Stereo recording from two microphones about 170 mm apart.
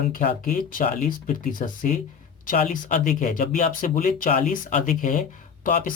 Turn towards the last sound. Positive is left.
turn(degrees=55)  # may be behind; listen again after turning